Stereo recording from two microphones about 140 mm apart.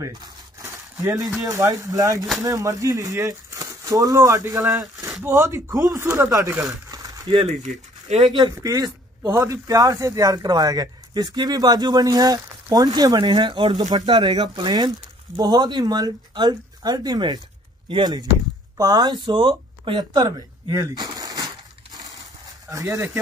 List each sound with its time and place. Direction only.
0.6 s speech: 20° right (ahead or behind)
6.9 s a sound: 25° right (ahead or behind)
7.4 s speech: 50° right (ahead or behind)
8.3 s speech: 30° right (ahead or behind)
22.7 s speech: 20° right (ahead or behind)